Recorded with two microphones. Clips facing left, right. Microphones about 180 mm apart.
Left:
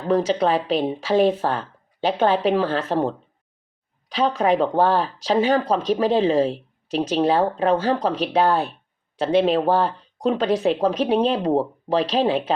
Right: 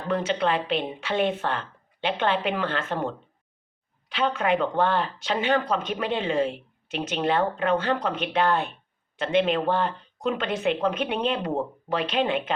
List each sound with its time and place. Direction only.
0.1 s speech: 35° left (ahead or behind)